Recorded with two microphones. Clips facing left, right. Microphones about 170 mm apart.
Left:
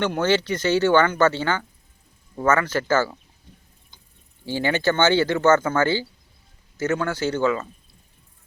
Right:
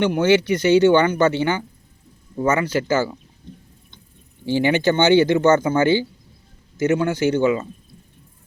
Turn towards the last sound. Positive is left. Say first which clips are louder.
# right 4 dB
turn(degrees=-20)  # may be behind; listen again after turning